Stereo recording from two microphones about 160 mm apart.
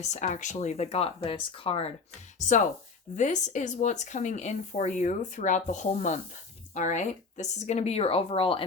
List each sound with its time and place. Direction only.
0.0 s speech: 50° left (ahead or behind)
3.2 s speech: 50° left (ahead or behind); by 8.6 s 35° left (ahead or behind)